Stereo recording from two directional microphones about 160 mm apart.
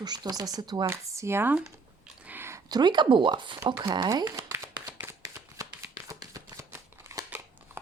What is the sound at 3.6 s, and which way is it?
Shuffling cards, 25° right (ahead or behind).